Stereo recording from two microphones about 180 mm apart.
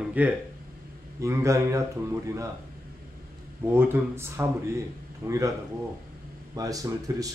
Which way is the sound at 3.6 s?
15° right (ahead or behind).